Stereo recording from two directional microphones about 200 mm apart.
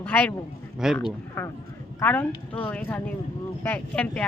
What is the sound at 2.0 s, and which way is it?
A woman's voice, 10° left (ahead or behind).